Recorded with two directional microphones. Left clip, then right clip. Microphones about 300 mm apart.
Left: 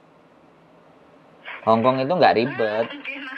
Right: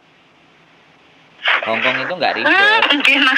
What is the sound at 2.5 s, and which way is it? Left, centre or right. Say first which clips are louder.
Speech: right 12 dB; right.